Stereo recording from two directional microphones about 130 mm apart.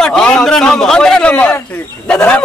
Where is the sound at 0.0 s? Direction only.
5° left (ahead or behind).